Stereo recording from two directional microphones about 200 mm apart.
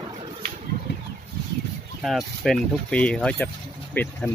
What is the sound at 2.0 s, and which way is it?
Speech, centre (ahead or behind).